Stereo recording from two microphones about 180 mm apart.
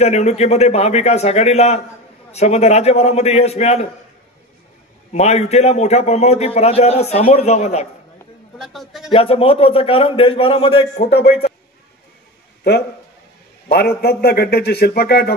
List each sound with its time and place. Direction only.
0.0 s a man's voice: 40° left (ahead or behind)
5.1 s a man's voice: 40° left (ahead or behind)
8.5 s a man's voice: centre (ahead or behind)
9.1 s a man's voice: 30° left (ahead or behind)
11.1 s speech: 70° left (ahead or behind)
13.7 s a man's voice: 60° left (ahead or behind)